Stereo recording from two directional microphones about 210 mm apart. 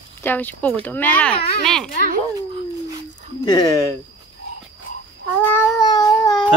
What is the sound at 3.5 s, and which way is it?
Speech, 20° left (ahead or behind).